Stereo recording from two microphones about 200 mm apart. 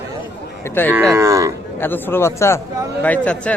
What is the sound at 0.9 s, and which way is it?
Speech, 10° right (ahead or behind).